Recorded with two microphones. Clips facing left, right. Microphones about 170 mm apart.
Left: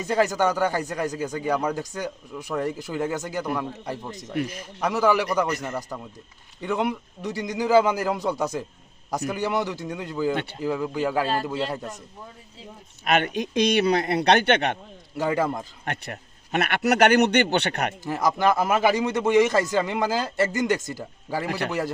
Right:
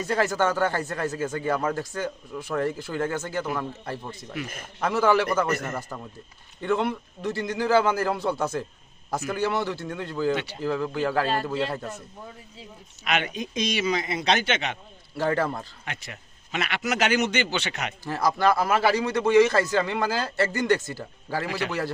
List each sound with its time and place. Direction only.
0.0 s a man's voice: 15° left (ahead or behind)
4.4 s speech: 50° right (ahead or behind)
4.8 s a man's voice: 10° left (ahead or behind)
13.1 s speech: 50° left (ahead or behind)
13.3 s speech: 70° left (ahead or behind)
15.2 s a man's voice: 15° left (ahead or behind)
15.9 s speech: 55° left (ahead or behind)
18.0 s a man's voice: 15° left (ahead or behind)